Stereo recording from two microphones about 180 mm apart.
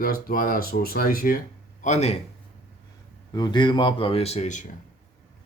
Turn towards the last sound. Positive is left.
turn(degrees=40)  # may be behind; listen again after turning